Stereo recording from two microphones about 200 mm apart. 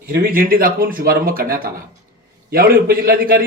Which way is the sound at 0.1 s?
50° right (ahead or behind).